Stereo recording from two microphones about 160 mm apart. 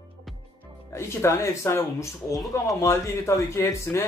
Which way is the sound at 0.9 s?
15° left (ahead or behind).